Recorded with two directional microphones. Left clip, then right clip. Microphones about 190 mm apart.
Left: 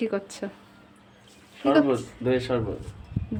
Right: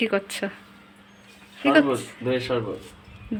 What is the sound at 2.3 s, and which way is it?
Speech, 30° left (ahead or behind).